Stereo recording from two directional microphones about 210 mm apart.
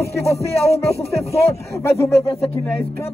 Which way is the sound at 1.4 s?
15° left (ahead or behind).